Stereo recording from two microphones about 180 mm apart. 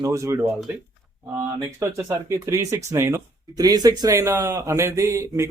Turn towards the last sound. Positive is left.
turn(degrees=-15)  # may be behind; listen again after turning